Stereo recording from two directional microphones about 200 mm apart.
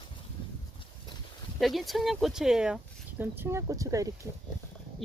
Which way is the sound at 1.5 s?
Centre (ahead or behind).